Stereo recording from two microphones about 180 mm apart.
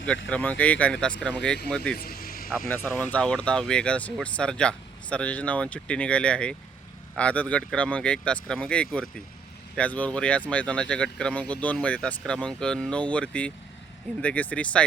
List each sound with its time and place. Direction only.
0.3 s speech: 10° left (ahead or behind)
2.0 s vehicle: 55° left (ahead or behind)
2.6 s speech: 10° left (ahead or behind)